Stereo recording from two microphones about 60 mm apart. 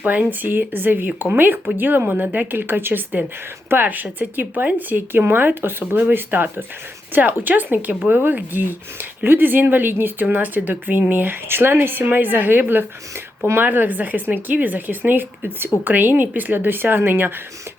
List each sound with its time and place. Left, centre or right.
0.0 s speech: right